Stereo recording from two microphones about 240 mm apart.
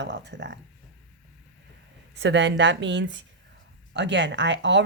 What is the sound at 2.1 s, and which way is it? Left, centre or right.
Speech, right.